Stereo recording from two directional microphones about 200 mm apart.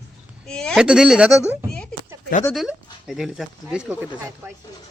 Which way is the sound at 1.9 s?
40° left (ahead or behind).